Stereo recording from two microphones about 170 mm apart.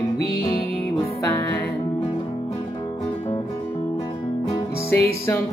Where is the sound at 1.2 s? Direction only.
15° left (ahead or behind).